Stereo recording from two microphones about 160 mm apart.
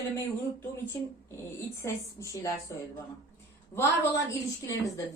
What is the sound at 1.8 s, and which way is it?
A woman's voice, 15° left (ahead or behind).